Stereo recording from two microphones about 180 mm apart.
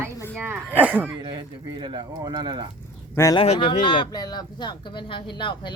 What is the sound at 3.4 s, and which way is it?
Speech, 35° left (ahead or behind).